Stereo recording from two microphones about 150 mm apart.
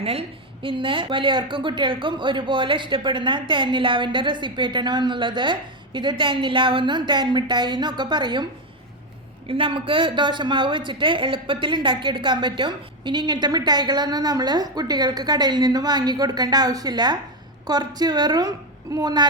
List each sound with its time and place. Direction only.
0.0 s a woman's voice: 40° right (ahead or behind)
9.5 s a woman's voice: 35° right (ahead or behind)